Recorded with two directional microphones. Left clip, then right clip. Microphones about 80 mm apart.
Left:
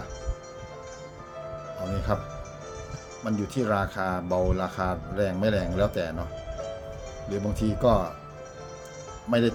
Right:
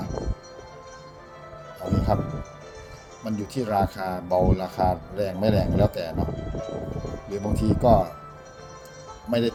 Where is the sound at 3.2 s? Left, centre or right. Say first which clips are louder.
Left 1 dB; left.